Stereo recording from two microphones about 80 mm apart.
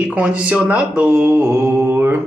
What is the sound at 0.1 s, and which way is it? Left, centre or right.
Speech, centre.